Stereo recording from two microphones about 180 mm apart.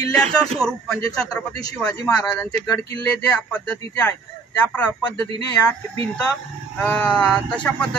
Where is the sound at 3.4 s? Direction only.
10° left (ahead or behind).